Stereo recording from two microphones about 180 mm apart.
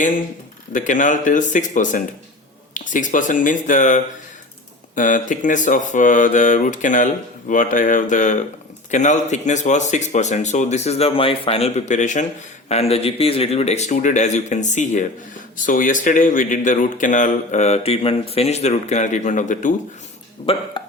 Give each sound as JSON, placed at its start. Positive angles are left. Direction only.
{"t": 0.7, "sound": "speech", "side_deg": 45}
{"t": 20.8, "sound": "cough", "side_deg": 25}